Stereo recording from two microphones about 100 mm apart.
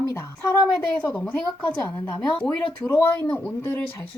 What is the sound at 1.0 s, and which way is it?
Speech, 10° left (ahead or behind).